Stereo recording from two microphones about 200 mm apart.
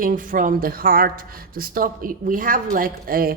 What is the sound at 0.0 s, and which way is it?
A woman's voice, 45° right (ahead or behind).